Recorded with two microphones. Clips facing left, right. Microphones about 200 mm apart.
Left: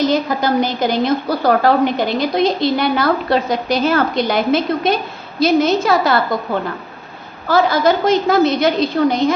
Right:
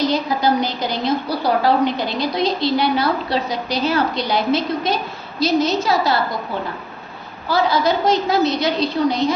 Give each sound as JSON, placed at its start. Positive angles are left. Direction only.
{"t": 0.0, "sound": "a woman's voice", "side_deg": 50}